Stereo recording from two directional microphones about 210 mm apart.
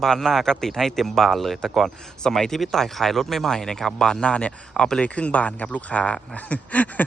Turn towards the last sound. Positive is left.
turn(degrees=5)  # may be behind; listen again after turning